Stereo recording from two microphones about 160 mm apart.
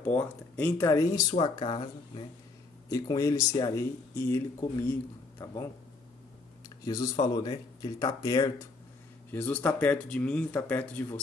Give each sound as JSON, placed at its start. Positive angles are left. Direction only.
{"t": 0.1, "sound": "speech", "side_deg": 10}
{"t": 0.8, "sound": "speech", "side_deg": 20}
{"t": 1.3, "sound": "speech", "side_deg": 35}
{"t": 2.9, "sound": "speech", "side_deg": 20}
{"t": 6.9, "sound": "speech", "side_deg": 20}
{"t": 9.3, "sound": "speech", "side_deg": 10}